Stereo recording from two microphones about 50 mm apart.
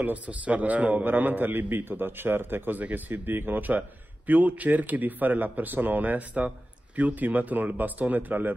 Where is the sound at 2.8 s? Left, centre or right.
Right.